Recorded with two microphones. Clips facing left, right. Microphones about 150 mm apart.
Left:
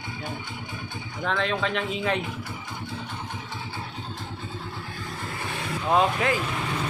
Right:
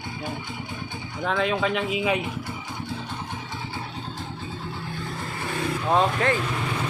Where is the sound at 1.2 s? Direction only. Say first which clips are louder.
Right 2 dB; 5° right (ahead or behind).